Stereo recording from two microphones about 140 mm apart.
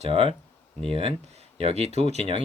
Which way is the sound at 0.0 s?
40° right (ahead or behind).